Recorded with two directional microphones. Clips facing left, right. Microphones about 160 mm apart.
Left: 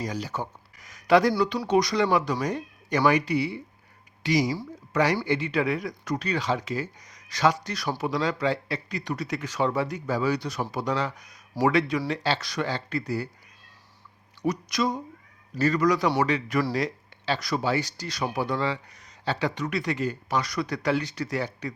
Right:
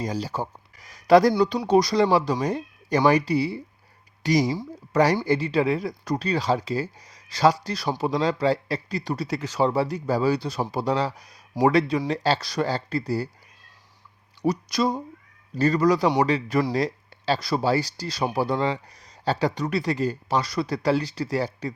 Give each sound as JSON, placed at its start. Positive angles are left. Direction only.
{"t": 0.0, "sound": "speech", "side_deg": -30}
{"t": 1.3, "sound": "speech", "side_deg": -25}
{"t": 14.4, "sound": "speech", "side_deg": -30}